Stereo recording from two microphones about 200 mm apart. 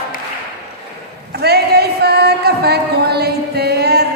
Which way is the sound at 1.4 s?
55° right (ahead or behind).